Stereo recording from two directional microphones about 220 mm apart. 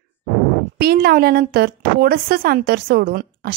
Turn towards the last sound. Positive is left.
turn(degrees=-45)  # may be behind; listen again after turning